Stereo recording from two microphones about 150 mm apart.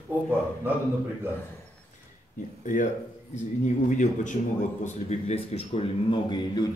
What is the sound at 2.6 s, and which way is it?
A man's voice, 55° left (ahead or behind).